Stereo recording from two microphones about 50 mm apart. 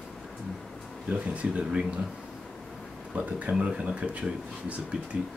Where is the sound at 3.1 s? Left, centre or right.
Right.